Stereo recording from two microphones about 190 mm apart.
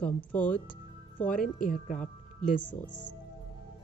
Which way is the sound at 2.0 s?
40° left (ahead or behind).